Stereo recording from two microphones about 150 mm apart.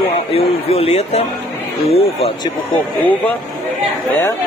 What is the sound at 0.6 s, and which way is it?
Speech, 40° left (ahead or behind).